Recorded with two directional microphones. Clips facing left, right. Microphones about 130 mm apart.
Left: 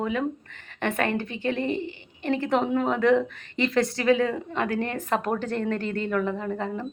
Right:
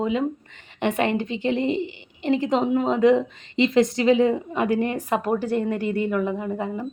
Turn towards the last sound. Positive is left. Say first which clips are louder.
# right 2 dB
turn(degrees=-10)  # may be behind; listen again after turning